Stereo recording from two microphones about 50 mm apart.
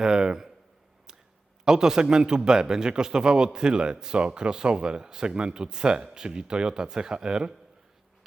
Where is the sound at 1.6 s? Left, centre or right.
Centre.